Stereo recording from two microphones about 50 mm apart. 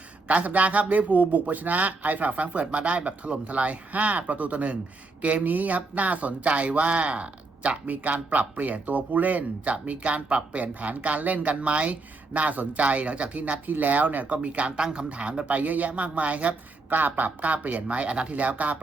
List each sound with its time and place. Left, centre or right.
0.3 s speech: right